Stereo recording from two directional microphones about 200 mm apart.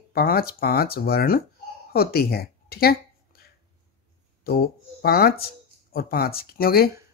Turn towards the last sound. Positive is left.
turn(degrees=50)  # may be behind; listen again after turning